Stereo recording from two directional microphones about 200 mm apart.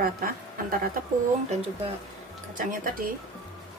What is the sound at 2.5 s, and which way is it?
Speech, 45° right (ahead or behind).